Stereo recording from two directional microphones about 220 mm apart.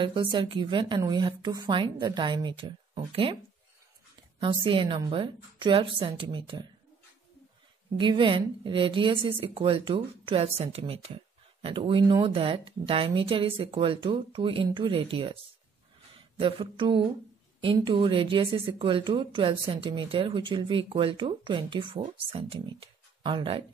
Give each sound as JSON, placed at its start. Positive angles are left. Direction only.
{"t": 0.0, "sound": "a woman's voice", "side_deg": -20}
{"t": 4.4, "sound": "a woman's voice", "side_deg": -20}
{"t": 8.0, "sound": "a woman's voice", "side_deg": -20}
{"t": 16.3, "sound": "a woman's voice", "side_deg": -25}